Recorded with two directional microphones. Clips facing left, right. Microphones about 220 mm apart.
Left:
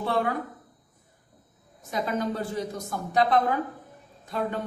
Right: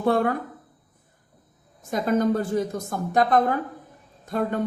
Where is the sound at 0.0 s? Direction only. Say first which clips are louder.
Right 5 dB; 50° right (ahead or behind).